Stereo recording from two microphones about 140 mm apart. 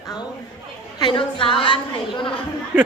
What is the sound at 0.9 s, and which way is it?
A woman's voice, 35° left (ahead or behind).